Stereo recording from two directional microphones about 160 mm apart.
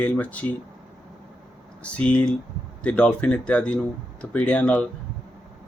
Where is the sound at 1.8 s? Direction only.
10° left (ahead or behind).